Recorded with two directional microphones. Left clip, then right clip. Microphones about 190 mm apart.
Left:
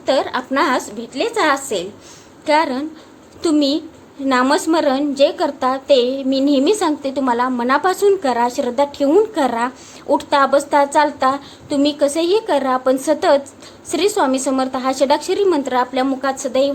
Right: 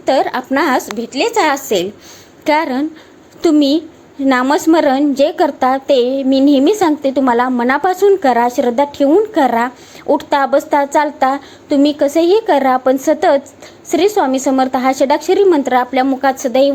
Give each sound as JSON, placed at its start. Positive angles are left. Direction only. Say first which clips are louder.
{"t": 0.0, "sound": "a woman's voice", "louder": "right 4 dB", "side_deg": -25}